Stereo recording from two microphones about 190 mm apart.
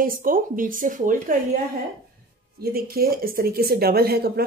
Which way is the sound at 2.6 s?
50° right (ahead or behind).